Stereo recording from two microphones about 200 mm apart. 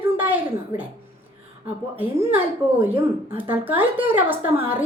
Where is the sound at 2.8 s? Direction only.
10° right (ahead or behind).